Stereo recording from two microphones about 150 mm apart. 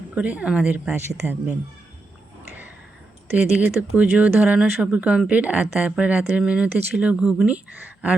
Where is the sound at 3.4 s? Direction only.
10° right (ahead or behind).